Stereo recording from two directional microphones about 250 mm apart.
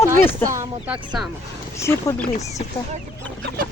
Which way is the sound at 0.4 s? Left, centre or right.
Centre.